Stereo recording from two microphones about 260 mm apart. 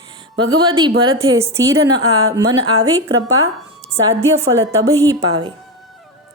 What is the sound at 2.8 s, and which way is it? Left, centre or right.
Speech, right.